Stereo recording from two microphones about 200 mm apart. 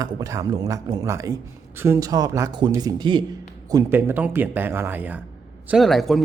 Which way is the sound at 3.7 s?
10° right (ahead or behind).